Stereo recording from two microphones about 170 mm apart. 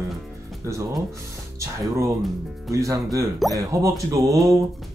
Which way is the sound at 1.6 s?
15° right (ahead or behind).